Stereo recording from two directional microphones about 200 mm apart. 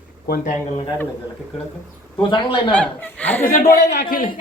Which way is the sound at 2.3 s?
25° left (ahead or behind).